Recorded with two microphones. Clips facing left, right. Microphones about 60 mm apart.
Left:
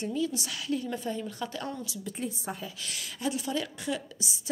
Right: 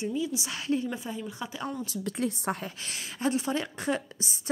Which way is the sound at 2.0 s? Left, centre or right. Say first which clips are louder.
Right 8 dB; right.